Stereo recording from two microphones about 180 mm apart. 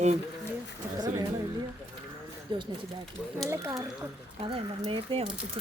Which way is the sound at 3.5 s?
15° right (ahead or behind).